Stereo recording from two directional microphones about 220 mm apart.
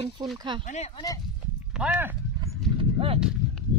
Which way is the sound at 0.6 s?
30° left (ahead or behind).